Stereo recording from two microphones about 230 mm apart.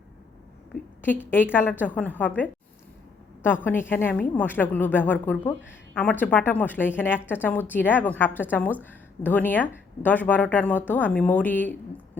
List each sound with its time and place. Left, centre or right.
1.0 s a woman's voice: centre